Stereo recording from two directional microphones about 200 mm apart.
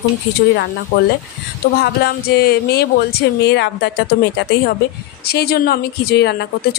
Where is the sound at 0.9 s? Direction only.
65° left (ahead or behind).